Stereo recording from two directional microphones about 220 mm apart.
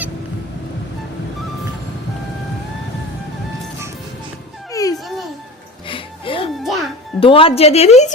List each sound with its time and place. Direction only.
4.7 s a sound: 15° left (ahead or behind)
5.0 s children playing: centre (ahead or behind)
5.9 s music: 25° left (ahead or behind)
6.6 s music: centre (ahead or behind)
7.2 s a woman's voice: 25° left (ahead or behind)